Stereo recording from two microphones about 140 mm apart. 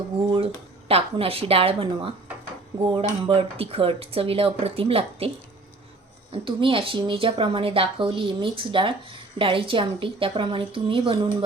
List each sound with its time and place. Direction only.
0.9 s speech: 45° right (ahead or behind)
6.3 s speech: 35° right (ahead or behind)